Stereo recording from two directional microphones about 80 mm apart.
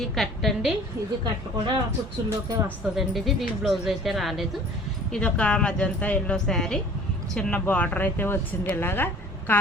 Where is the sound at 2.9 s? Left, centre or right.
Centre.